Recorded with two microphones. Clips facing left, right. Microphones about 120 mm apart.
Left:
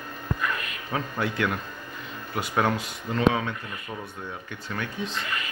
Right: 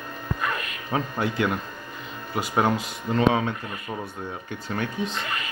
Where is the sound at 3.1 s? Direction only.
30° right (ahead or behind).